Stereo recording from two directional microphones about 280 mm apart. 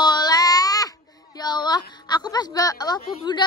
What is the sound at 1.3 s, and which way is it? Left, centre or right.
A woman's voice, centre.